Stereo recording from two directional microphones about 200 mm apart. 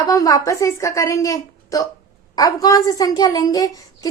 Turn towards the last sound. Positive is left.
turn(degrees=20)  # may be behind; listen again after turning